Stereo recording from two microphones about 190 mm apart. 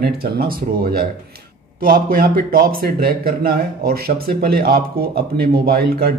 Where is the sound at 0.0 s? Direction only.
55° right (ahead or behind).